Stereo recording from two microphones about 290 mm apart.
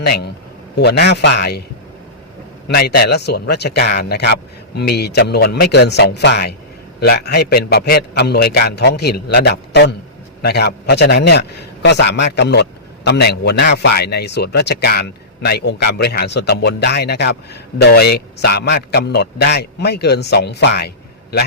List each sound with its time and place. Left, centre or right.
0.0 s a man's voice: left
2.6 s speech: left